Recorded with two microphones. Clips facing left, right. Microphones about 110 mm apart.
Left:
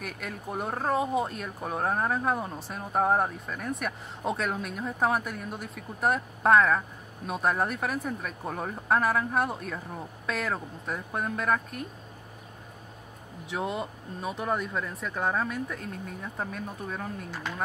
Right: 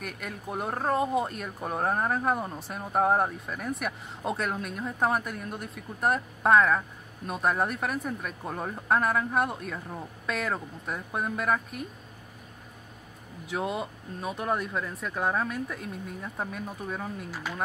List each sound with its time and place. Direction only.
0.0 s speech: centre (ahead or behind)
13.5 s speech: centre (ahead or behind)